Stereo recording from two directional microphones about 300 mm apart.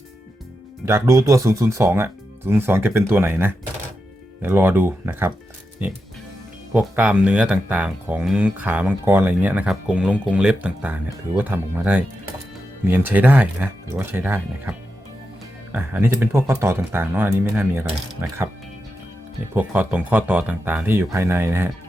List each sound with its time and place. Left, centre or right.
0.9 s speech: centre
19.5 s speech: centre